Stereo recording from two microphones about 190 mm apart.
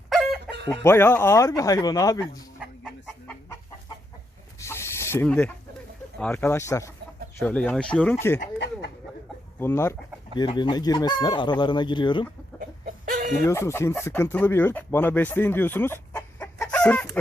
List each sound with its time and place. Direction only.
0.1 s chicken: centre (ahead or behind)
0.8 s speech: 10° left (ahead or behind)
4.6 s chicken: 15° left (ahead or behind)
6.1 s speech: 10° left (ahead or behind)
8.5 s a sound: 60° left (ahead or behind)
9.6 s speech: 10° left (ahead or behind)
10.3 s speech: 25° left (ahead or behind)
12.5 s chicken: 45° right (ahead or behind)
13.5 s speech: 15° left (ahead or behind)